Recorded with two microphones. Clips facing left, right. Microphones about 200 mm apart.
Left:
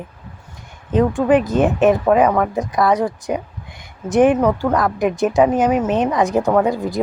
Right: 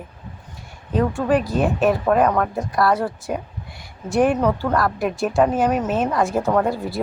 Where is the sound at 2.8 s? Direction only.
20° left (ahead or behind).